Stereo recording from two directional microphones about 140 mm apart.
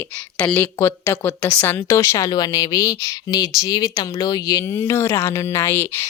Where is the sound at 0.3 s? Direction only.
10° left (ahead or behind).